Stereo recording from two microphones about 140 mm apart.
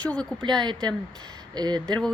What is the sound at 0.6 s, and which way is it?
Speech, 30° right (ahead or behind).